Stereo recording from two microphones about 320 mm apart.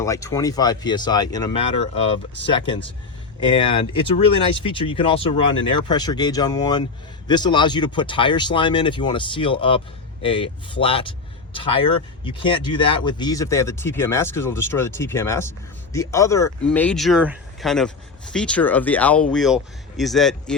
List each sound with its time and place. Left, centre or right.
0.0 s speech: centre